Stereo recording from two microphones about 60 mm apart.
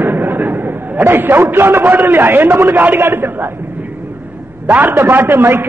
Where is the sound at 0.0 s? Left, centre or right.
Right.